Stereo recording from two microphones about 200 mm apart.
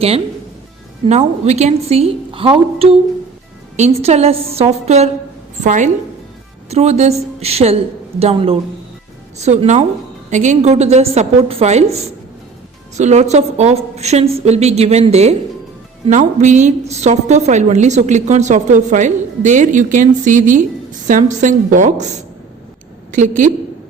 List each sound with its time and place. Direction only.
1.0 s a woman's voice: 35° right (ahead or behind)